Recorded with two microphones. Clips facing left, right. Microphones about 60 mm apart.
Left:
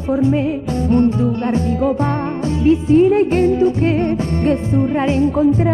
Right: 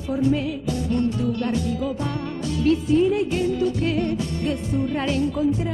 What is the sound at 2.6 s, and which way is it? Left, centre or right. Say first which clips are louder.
Music: left 7 dB; left.